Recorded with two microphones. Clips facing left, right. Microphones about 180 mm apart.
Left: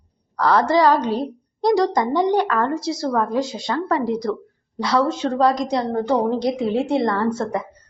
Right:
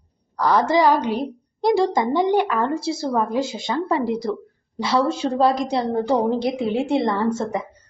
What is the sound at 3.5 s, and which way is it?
A woman's voice, 20° right (ahead or behind).